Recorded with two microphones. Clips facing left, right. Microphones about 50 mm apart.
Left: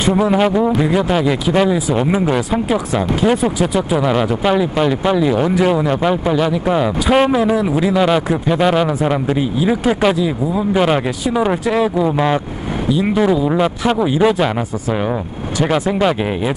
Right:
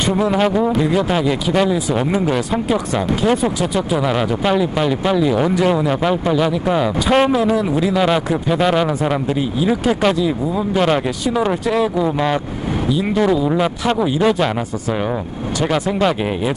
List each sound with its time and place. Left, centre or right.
0.0 s a man's voice: centre